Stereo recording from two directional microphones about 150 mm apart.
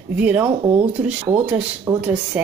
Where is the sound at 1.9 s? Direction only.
15° right (ahead or behind).